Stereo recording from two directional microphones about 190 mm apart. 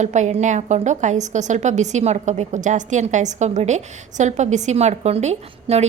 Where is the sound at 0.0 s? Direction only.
40° right (ahead or behind).